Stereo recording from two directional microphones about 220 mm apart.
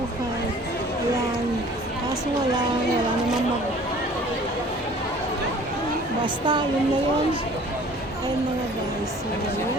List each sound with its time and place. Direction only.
6.2 s a woman's voice: 20° right (ahead or behind)